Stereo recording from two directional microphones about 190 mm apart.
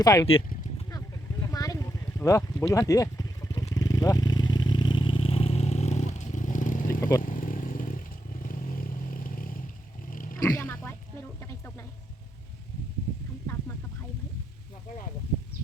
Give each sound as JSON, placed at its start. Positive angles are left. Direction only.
{"t": 0.0, "sound": "speech", "side_deg": 20}
{"t": 0.3, "sound": "speech", "side_deg": 30}
{"t": 0.9, "sound": "vehicle", "side_deg": 15}
{"t": 7.2, "sound": "motorcycle", "side_deg": 45}
{"t": 10.1, "sound": "vehicle", "side_deg": 45}
{"t": 10.4, "sound": "oink", "side_deg": 15}